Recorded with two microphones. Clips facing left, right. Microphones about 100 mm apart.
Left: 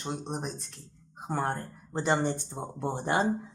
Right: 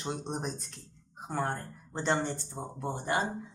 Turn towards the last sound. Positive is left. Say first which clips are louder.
# left 3 dB
turn(degrees=30)  # may be behind; listen again after turning